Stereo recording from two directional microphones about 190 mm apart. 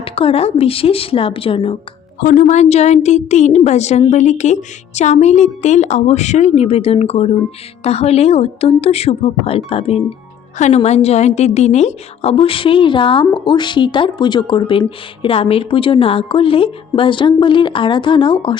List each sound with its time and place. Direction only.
0.0 s a woman's voice: 30° left (ahead or behind)
2.2 s a woman's voice: 40° left (ahead or behind)